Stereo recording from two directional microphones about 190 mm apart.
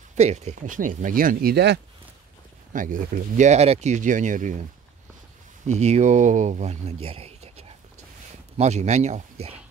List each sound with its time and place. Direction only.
0.1 s speech: 35° right (ahead or behind); by 1.8 s 60° right (ahead or behind)
2.7 s speech: 45° right (ahead or behind)
5.7 s speech: 35° right (ahead or behind)